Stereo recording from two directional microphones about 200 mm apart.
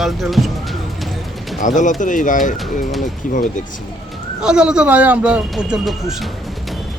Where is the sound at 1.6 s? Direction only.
40° left (ahead or behind).